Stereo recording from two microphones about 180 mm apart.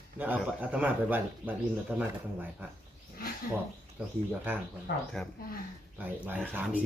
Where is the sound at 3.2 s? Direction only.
55° left (ahead or behind).